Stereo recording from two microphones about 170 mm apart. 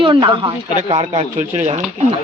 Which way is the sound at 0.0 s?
30° right (ahead or behind).